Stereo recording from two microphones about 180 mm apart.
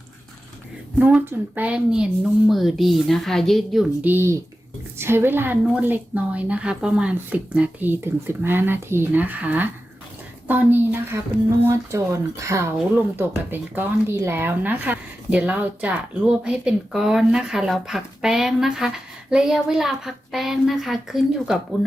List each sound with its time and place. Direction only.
0.9 s a woman's voice: 5° right (ahead or behind)